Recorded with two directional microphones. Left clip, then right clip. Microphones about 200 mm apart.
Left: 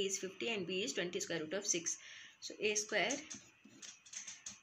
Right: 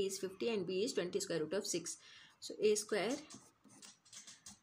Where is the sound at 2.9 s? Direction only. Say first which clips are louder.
Left 2 dB; 60° right (ahead or behind).